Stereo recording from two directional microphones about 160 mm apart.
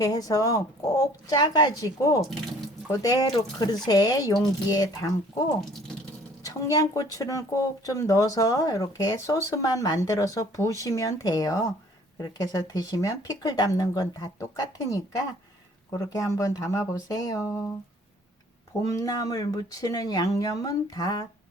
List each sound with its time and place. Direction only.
0.0 s speech: 20° left (ahead or behind)
6.4 s speech: 20° left (ahead or behind)
18.9 s speech: 20° left (ahead or behind)